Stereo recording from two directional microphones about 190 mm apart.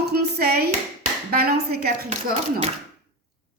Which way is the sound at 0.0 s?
55° right (ahead or behind).